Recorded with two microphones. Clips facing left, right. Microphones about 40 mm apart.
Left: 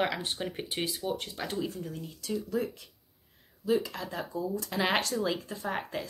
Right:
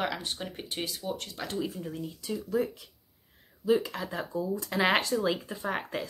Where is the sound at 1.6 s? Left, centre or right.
Centre.